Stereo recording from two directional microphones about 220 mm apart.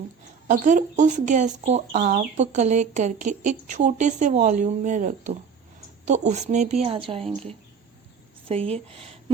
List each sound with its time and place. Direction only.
0.4 s a woman's voice: 35° right (ahead or behind)